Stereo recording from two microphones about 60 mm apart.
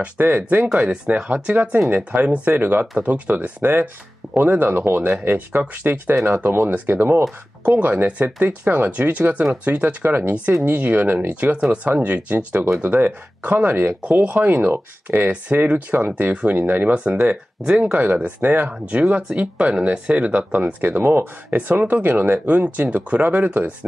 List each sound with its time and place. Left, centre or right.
0.0 s speech: right
0.8 s speech: centre
1.3 s speech: right
8.6 s speech: right